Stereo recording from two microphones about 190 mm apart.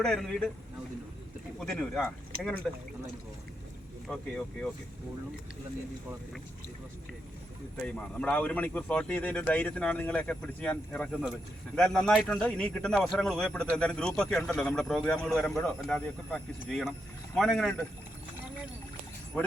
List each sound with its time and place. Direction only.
0.0 s speech: centre (ahead or behind)
1.5 s speech: 5° left (ahead or behind)
4.0 s speech: 5° left (ahead or behind)
7.9 s speech: 5° left (ahead or behind)